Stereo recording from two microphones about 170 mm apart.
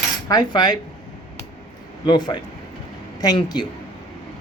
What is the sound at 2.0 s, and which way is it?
Speech, 25° left (ahead or behind).